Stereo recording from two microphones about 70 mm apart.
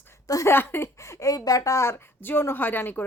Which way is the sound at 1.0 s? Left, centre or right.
Left.